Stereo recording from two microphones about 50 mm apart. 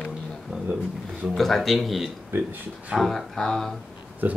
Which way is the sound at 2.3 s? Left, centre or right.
Right.